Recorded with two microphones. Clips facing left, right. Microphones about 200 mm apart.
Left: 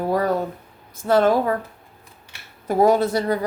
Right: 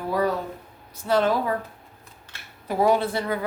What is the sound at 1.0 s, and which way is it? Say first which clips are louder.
Speech: left 5 dB; 50° left (ahead or behind).